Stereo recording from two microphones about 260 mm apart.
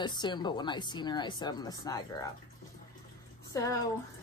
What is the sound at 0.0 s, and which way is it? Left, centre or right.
Speech, centre.